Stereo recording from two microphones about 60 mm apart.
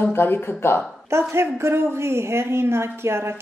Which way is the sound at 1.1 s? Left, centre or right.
Right.